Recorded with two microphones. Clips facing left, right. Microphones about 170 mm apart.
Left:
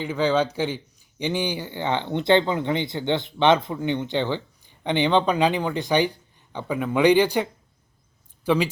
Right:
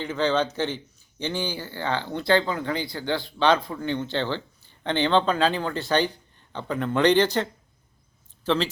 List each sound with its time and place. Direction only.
0.0 s speech: 10° left (ahead or behind)
8.4 s speech: 10° left (ahead or behind)